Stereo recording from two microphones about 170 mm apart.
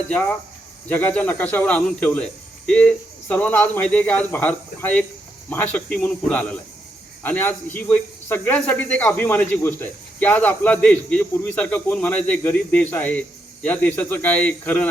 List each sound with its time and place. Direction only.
0.1 s speech: 5° left (ahead or behind)